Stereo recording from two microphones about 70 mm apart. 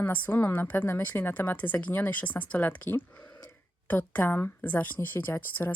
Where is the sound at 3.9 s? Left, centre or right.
Left.